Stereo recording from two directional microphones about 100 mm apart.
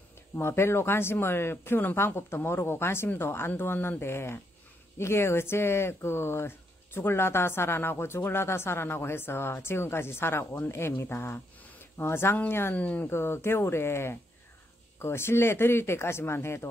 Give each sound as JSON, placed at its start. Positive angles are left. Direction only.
{"t": 0.4, "sound": "speech", "side_deg": 25}
{"t": 13.1, "sound": "speech", "side_deg": 25}